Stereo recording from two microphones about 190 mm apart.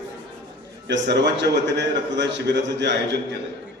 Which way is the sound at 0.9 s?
65° right (ahead or behind).